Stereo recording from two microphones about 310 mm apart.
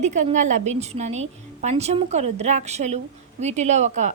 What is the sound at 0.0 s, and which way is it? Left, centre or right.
Speech, right.